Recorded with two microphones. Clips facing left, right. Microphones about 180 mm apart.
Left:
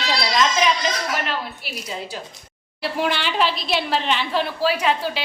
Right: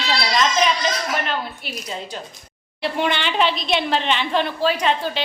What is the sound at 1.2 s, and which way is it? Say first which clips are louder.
A woman's voice: right 1 dB; 5° left (ahead or behind).